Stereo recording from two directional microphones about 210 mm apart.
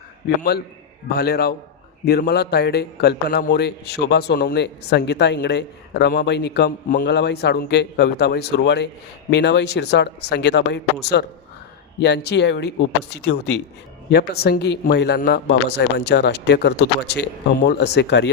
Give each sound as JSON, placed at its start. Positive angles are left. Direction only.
{"t": 0.3, "sound": "a man's voice", "side_deg": 50}